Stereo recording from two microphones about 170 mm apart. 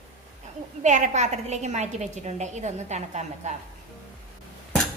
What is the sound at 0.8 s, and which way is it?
A woman's voice, 45° right (ahead or behind).